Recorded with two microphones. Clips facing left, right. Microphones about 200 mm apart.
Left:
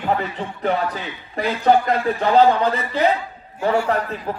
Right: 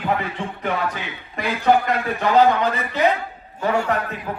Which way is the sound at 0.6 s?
35° left (ahead or behind).